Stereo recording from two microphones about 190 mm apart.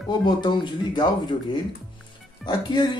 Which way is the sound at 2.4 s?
25° left (ahead or behind).